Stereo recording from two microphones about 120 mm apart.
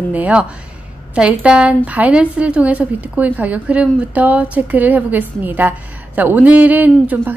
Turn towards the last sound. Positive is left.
turn(degrees=-15)  # may be behind; listen again after turning